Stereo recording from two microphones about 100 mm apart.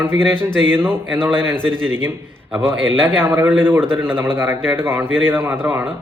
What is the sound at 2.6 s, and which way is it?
Speech, 25° right (ahead or behind).